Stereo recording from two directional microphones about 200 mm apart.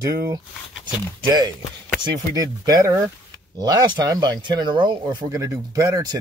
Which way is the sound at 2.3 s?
20° right (ahead or behind).